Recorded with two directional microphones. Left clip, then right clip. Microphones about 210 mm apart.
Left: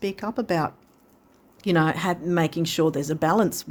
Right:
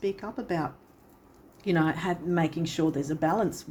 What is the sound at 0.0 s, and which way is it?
Speech, 55° left (ahead or behind).